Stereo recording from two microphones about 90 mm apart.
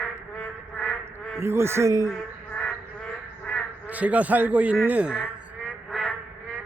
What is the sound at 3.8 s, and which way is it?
A man's voice, 15° right (ahead or behind).